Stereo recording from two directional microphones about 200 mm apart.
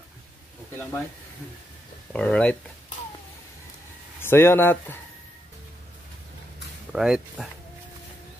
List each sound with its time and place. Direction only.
2.1 s speech: 5° left (ahead or behind)
4.2 s speech: 10° left (ahead or behind)
6.9 s speech: 5° right (ahead or behind)